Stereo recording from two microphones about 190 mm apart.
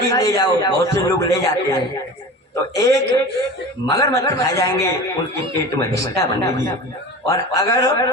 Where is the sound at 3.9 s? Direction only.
15° left (ahead or behind).